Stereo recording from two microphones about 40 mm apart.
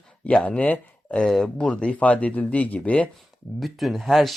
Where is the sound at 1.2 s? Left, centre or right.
Centre.